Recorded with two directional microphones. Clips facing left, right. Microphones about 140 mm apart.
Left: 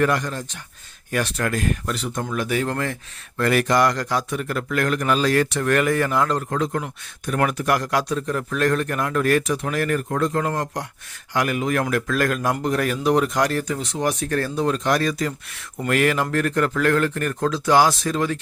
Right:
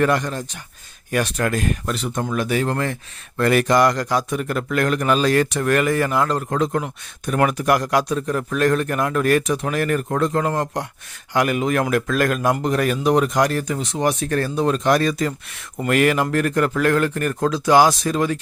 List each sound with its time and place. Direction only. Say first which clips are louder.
0.0 s a man's voice: right 2 dB; 25° right (ahead or behind); by 6.4 s 5° right (ahead or behind)
6.5 s a man's voice: right 3 dB; 25° right (ahead or behind)